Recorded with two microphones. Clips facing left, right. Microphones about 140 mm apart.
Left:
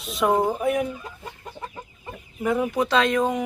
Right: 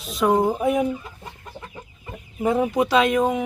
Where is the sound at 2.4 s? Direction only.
30° right (ahead or behind).